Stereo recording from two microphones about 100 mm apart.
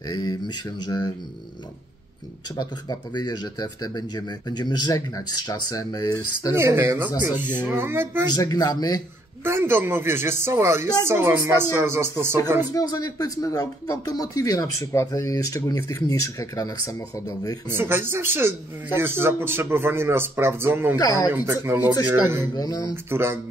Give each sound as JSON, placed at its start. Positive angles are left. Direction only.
{"t": 0.1, "sound": "speech", "side_deg": 45}
{"t": 2.6, "sound": "speech", "side_deg": 45}
{"t": 6.5, "sound": "speech", "side_deg": -25}
{"t": 8.4, "sound": "speech", "side_deg": 40}
{"t": 9.4, "sound": "speech", "side_deg": -20}
{"t": 12.7, "sound": "speech", "side_deg": 40}
{"t": 17.7, "sound": "speech", "side_deg": -25}
{"t": 21.0, "sound": "speech", "side_deg": 40}
{"t": 21.3, "sound": "speech", "side_deg": -20}
{"t": 22.4, "sound": "speech", "side_deg": 40}
{"t": 23.0, "sound": "speech", "side_deg": -25}